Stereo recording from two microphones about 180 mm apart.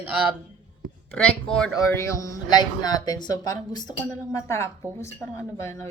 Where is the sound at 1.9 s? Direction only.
15° left (ahead or behind).